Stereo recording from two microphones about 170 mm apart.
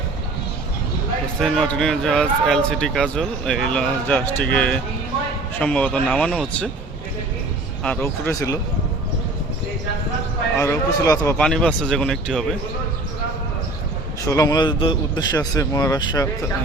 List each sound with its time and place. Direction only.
1.4 s a man's voice: centre (ahead or behind)
8.0 s speech: 15° left (ahead or behind)
10.6 s a man's voice: 15° left (ahead or behind)
11.3 s speech: 5° left (ahead or behind)
14.3 s speech: 20° left (ahead or behind)